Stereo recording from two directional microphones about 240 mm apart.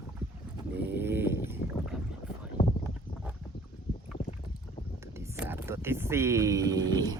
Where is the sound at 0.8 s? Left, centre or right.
Centre.